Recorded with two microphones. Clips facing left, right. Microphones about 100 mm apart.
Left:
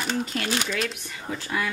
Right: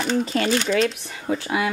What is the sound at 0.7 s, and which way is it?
Speech, 35° right (ahead or behind).